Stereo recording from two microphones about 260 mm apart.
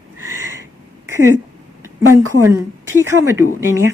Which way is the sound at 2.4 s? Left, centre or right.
Centre.